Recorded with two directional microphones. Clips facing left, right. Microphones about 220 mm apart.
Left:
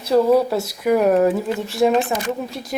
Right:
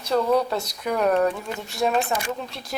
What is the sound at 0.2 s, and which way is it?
Speech, 25° left (ahead or behind).